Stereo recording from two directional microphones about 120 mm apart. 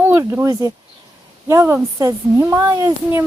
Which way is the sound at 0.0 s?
25° right (ahead or behind).